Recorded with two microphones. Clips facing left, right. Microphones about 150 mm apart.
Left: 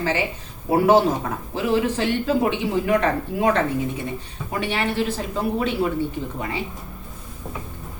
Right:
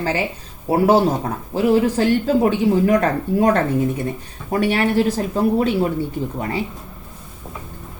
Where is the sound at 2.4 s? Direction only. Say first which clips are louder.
Right 5 dB; 40° right (ahead or behind).